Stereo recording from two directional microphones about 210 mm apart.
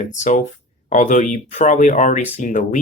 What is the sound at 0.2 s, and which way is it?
Speech, 35° left (ahead or behind).